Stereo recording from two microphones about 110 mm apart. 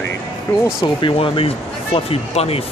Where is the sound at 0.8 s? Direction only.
50° left (ahead or behind).